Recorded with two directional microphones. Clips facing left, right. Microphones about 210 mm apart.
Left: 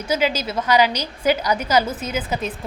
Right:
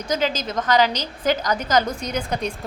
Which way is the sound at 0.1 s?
10° left (ahead or behind).